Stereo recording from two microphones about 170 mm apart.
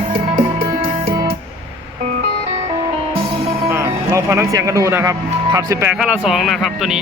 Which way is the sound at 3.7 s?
15° right (ahead or behind).